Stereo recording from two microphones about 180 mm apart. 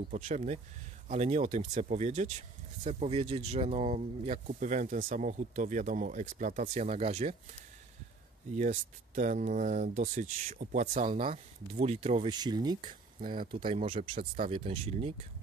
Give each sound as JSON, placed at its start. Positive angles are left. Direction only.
{"t": 0.1, "sound": "speech", "side_deg": -40}
{"t": 8.5, "sound": "speech", "side_deg": -45}
{"t": 12.8, "sound": "speech", "side_deg": -50}
{"t": 13.5, "sound": "speech", "side_deg": -30}